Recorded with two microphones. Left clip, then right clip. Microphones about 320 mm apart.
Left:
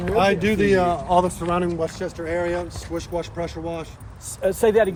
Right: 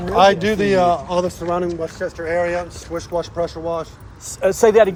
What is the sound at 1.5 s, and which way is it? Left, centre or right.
Speech, left.